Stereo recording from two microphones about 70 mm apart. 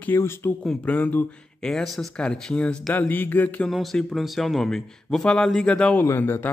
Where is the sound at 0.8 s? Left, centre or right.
Left.